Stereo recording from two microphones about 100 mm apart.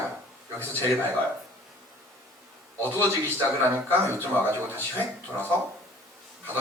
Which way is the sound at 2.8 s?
25° right (ahead or behind).